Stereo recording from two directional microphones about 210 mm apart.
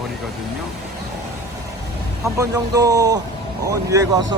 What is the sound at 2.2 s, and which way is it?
A man's voice, 15° right (ahead or behind).